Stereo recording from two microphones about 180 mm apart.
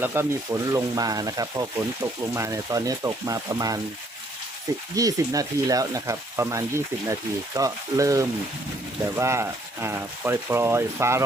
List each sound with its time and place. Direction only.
0.0 s speech: 15° right (ahead or behind)
4.9 s speech: 20° right (ahead or behind)